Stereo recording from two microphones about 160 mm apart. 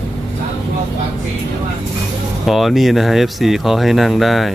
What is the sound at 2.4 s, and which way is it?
Speech, centre (ahead or behind).